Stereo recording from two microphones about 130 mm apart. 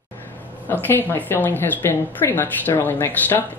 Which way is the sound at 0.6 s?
15° left (ahead or behind).